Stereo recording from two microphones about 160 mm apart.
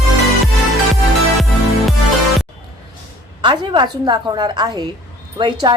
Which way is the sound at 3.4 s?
30° right (ahead or behind).